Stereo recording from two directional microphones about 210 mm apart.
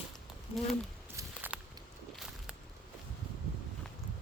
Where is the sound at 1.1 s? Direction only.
10° right (ahead or behind).